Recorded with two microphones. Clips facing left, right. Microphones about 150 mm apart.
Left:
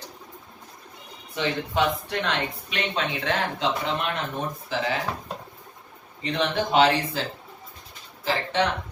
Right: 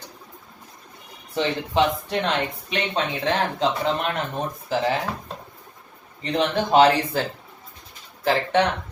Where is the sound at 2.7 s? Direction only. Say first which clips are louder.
Right 3 dB; 30° right (ahead or behind).